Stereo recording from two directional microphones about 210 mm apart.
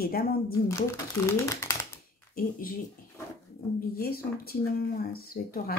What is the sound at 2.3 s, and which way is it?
Speech, 45° left (ahead or behind).